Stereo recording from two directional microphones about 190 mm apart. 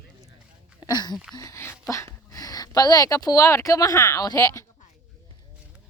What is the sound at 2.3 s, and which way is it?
Speech, 20° left (ahead or behind).